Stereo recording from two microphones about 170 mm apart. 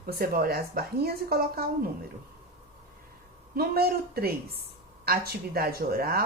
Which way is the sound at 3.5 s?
65° right (ahead or behind).